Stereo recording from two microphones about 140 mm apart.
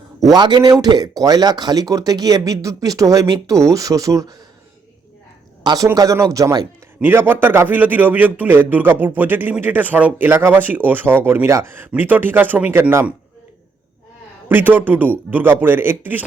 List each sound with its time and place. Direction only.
0.2 s speech: 30° right (ahead or behind)
5.6 s speech: 25° right (ahead or behind)
7.0 s a man's voice: 15° right (ahead or behind)
14.4 s a man's voice: 15° right (ahead or behind)